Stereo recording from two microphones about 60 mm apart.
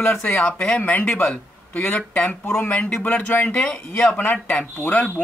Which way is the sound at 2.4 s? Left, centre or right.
Left.